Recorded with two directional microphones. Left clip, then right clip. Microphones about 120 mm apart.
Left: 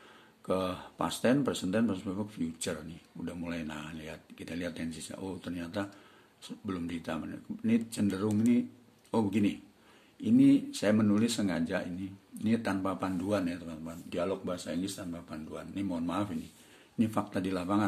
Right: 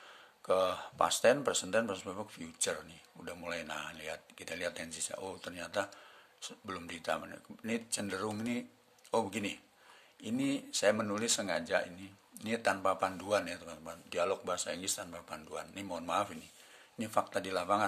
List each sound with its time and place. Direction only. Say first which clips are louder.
0.5 s speech: right 2 dB; 35° right (ahead or behind)
17.0 s speech: left 1 dB; 30° right (ahead or behind)